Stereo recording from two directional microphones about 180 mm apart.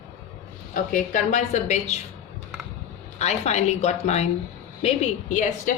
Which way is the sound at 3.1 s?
35° left (ahead or behind).